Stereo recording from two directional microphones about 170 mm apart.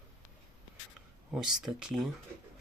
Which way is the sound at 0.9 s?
5° right (ahead or behind).